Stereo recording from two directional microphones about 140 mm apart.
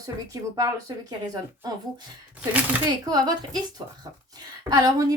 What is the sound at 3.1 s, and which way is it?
Speech, 30° right (ahead or behind).